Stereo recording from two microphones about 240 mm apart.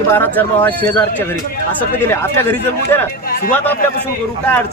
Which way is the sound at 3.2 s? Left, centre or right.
Left.